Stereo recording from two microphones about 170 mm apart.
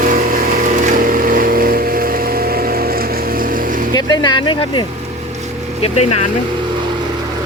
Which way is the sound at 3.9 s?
25° left (ahead or behind).